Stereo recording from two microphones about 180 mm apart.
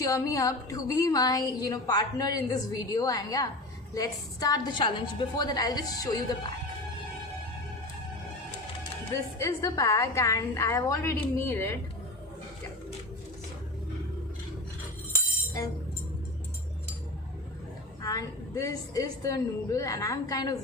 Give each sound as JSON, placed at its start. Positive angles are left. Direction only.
{"t": 0.0, "sound": "a woman's voice", "side_deg": 20}
{"t": 9.4, "sound": "a woman's voice", "side_deg": 15}
{"t": 15.1, "sound": "music", "side_deg": 20}
{"t": 18.0, "sound": "a woman's voice", "side_deg": 20}